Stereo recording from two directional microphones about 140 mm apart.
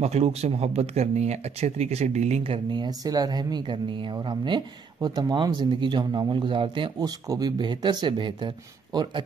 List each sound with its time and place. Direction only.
0.0 s speech: 50° right (ahead or behind); by 9.2 s 35° right (ahead or behind)